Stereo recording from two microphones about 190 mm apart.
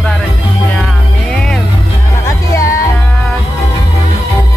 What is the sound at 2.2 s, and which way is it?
Music, 15° left (ahead or behind).